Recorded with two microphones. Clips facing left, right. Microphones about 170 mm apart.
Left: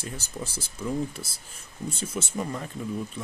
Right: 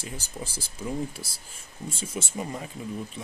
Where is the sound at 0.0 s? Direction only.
10° right (ahead or behind).